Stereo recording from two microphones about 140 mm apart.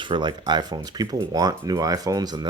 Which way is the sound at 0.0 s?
35° right (ahead or behind).